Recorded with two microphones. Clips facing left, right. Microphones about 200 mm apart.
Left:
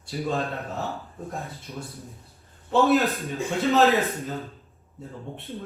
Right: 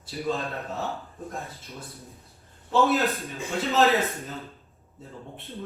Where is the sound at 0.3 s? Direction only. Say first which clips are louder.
Left 2 dB; centre (ahead or behind).